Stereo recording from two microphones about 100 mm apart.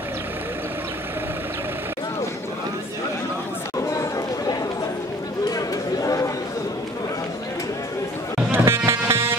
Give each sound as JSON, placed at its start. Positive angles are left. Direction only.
{"t": 3.8, "sound": "chatter", "side_deg": 30}
{"t": 5.5, "sound": "a sound", "side_deg": 35}
{"t": 8.5, "sound": "vehicle", "side_deg": -25}